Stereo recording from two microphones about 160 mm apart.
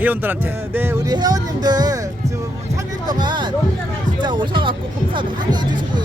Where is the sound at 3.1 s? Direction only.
25° right (ahead or behind).